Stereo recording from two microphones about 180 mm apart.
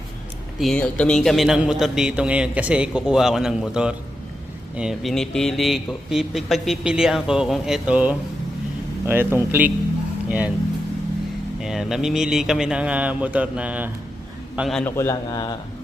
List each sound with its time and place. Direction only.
0.6 s a man's voice: 5° left (ahead or behind)
11.6 s a man's voice: centre (ahead or behind)
14.9 s a man's voice: 15° left (ahead or behind)